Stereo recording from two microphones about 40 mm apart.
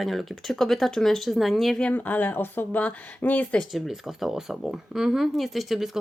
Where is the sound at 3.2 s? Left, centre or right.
Left.